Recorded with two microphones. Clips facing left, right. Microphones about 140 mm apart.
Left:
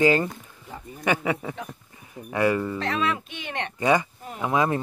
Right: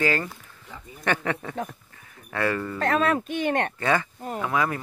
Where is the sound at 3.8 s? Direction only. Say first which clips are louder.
Left 3 dB; 15° left (ahead or behind).